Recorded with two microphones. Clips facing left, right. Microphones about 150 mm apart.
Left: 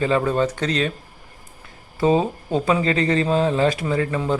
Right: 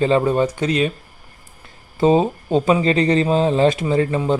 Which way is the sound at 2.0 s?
20° right (ahead or behind).